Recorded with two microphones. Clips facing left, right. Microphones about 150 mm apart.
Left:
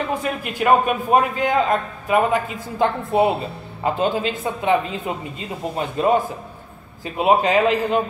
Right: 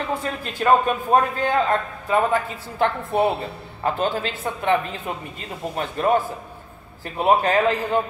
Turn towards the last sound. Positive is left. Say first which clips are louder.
# left 2 dB
turn(degrees=15)  # may be behind; listen again after turning